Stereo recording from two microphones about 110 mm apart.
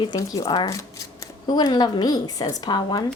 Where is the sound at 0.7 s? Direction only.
30° left (ahead or behind).